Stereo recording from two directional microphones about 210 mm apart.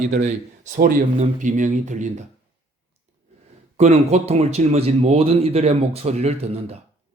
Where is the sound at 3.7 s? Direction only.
30° right (ahead or behind).